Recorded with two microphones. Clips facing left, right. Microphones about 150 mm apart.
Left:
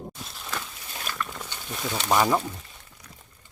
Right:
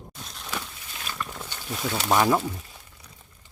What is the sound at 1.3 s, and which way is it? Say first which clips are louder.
Speech: right 1 dB; 5° right (ahead or behind).